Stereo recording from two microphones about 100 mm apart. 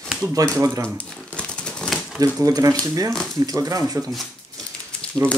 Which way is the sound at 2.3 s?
35° right (ahead or behind).